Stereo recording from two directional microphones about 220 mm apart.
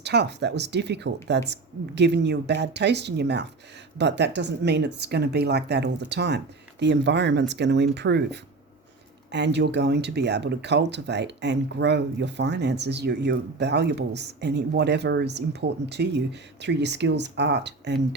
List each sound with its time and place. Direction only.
0.0 s speech: 50° right (ahead or behind)